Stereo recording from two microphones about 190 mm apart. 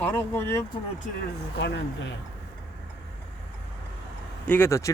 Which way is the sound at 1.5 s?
65° left (ahead or behind).